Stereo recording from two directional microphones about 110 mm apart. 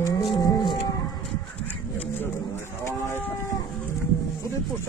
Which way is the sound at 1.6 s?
15° left (ahead or behind).